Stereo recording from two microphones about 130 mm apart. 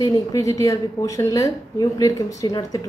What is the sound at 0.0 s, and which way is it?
A woman's voice, 25° left (ahead or behind).